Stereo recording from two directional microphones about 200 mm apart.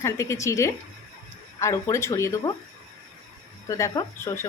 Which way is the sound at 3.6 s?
15° left (ahead or behind).